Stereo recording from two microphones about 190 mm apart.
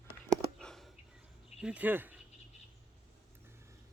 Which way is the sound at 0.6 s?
Centre (ahead or behind).